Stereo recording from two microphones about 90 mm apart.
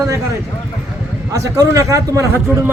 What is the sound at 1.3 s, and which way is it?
Speech, 40° right (ahead or behind).